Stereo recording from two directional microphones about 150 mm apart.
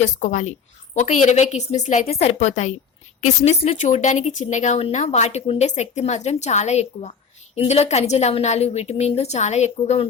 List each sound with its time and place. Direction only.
0.0 s speech: 50° left (ahead or behind)